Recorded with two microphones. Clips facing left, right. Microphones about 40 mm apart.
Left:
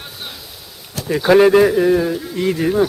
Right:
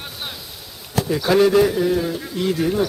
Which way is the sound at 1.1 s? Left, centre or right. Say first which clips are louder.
Left 5 dB; left.